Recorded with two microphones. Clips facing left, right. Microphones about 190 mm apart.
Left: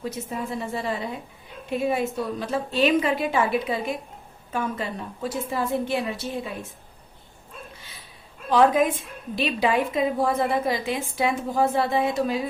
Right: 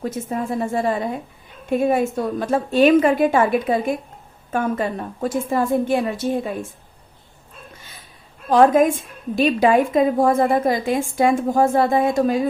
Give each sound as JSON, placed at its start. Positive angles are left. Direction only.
{"t": 0.0, "sound": "a woman's voice", "side_deg": -50}
{"t": 8.4, "sound": "a woman's voice", "side_deg": -45}